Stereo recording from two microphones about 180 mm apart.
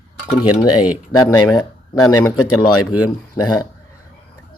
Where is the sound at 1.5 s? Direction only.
15° left (ahead or behind).